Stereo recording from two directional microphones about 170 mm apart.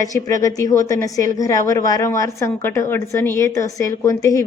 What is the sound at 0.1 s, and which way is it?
A woman's voice, 20° left (ahead or behind).